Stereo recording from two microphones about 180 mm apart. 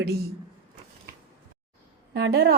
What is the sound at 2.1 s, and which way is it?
Speech, 65° right (ahead or behind).